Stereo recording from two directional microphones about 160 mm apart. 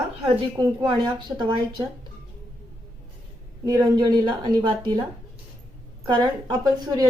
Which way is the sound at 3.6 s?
25° right (ahead or behind).